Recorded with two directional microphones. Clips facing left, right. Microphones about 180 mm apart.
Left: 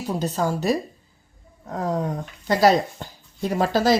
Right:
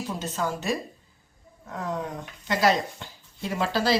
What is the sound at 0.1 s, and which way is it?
A woman's voice, 35° left (ahead or behind).